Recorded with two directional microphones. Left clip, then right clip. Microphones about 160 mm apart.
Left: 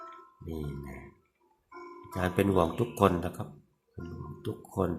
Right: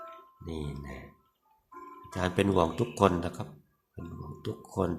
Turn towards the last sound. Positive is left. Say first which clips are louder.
# even
turn(degrees=0)  # may be behind; listen again after turning